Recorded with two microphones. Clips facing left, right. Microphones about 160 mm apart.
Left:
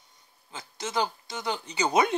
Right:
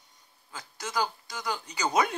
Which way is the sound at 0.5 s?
25° left (ahead or behind).